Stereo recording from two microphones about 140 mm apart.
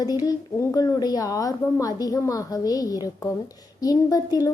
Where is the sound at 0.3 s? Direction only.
25° left (ahead or behind).